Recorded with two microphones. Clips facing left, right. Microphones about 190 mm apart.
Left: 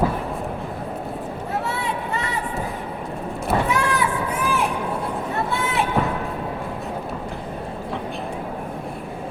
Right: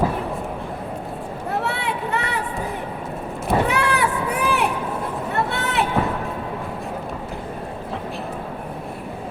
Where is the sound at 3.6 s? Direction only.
65° right (ahead or behind).